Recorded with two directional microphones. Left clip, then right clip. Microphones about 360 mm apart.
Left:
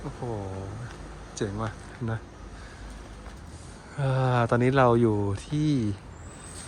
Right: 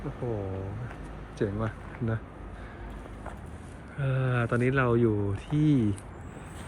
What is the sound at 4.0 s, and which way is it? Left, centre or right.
Speech, centre.